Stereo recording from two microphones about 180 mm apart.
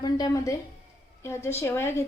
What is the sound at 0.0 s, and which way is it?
A woman's voice, 20° left (ahead or behind).